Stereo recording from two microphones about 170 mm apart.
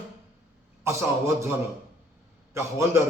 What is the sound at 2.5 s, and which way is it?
Speech, 15° right (ahead or behind).